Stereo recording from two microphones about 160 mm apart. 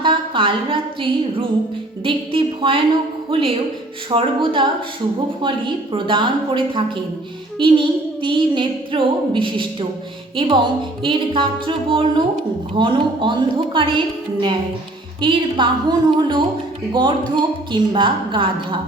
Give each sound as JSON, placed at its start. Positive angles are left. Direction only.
{"t": 0.0, "sound": "a sound", "side_deg": -30}
{"t": 2.0, "sound": "speech", "side_deg": -30}
{"t": 15.2, "sound": "a woman's voice", "side_deg": -30}